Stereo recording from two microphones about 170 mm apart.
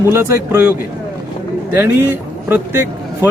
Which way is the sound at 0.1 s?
15° right (ahead or behind).